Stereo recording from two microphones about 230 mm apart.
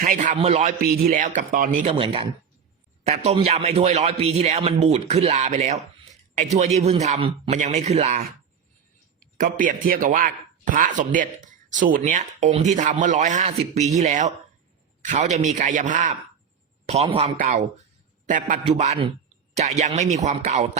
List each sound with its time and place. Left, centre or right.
0.0 s a man's voice: right
2.0 s speech: right
9.4 s a man's voice: right